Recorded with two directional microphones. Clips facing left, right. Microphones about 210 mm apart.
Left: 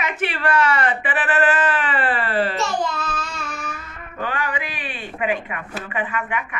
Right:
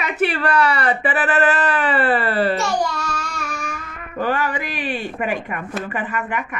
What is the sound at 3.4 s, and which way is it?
Music, 10° right (ahead or behind).